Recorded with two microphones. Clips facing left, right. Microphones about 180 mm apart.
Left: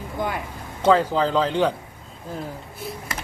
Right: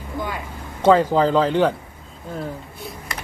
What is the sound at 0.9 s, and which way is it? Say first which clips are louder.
Speech: right 3 dB; 5° right (ahead or behind).